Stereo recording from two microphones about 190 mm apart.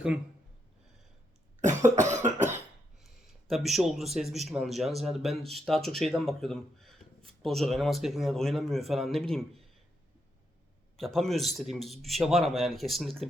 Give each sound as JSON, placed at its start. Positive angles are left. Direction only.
{"t": 1.6, "sound": "cough", "side_deg": -40}
{"t": 3.0, "sound": "a man's voice", "side_deg": 0}
{"t": 10.9, "sound": "a man's voice", "side_deg": 0}